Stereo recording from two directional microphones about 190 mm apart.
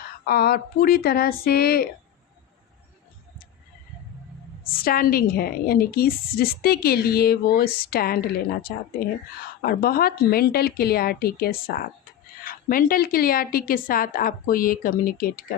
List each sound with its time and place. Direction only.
0.3 s a woman's voice: 55° left (ahead or behind)
4.6 s a woman's voice: 50° left (ahead or behind)